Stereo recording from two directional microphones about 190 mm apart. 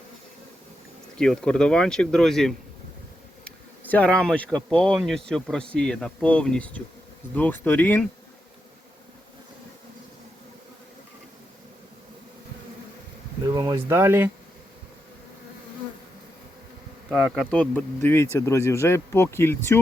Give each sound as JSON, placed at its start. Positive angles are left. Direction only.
{"t": 1.1, "sound": "speech", "side_deg": 5}
{"t": 3.8, "sound": "speech", "side_deg": 5}
{"t": 13.4, "sound": "a sound", "side_deg": -20}
{"t": 17.1, "sound": "speech", "side_deg": 0}